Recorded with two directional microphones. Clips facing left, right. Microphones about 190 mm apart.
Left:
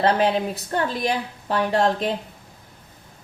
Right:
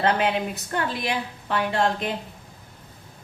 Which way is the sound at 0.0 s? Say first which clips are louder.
Left 3 dB; 35° left (ahead or behind).